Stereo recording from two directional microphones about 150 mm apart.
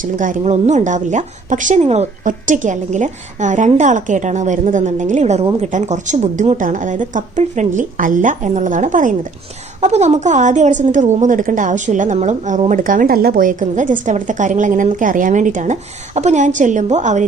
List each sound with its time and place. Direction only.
0.0 s a woman's voice: 60° right (ahead or behind)